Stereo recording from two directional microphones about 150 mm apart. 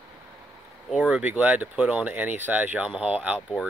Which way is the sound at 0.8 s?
5° right (ahead or behind).